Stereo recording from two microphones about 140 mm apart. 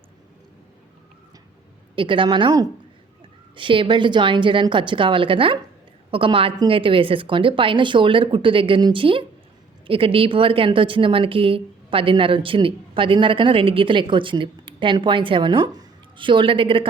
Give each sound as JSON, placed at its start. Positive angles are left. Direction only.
{"t": 2.0, "sound": "a woman's voice", "side_deg": -35}